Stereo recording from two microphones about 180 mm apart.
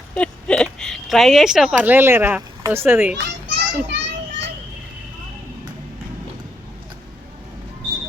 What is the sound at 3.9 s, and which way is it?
Children playing, 75° right (ahead or behind).